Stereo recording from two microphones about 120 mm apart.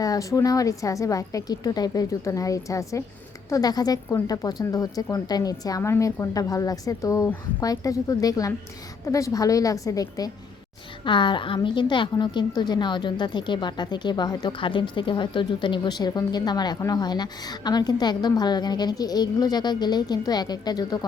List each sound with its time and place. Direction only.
0.0 s a woman's voice: 30° left (ahead or behind)
11.0 s a woman's voice: 40° left (ahead or behind)